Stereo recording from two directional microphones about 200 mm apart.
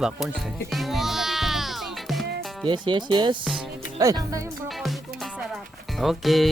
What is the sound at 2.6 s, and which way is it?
Speech, 25° right (ahead or behind).